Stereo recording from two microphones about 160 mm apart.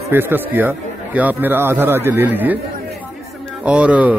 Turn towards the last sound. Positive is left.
turn(degrees=-10)  # may be behind; listen again after turning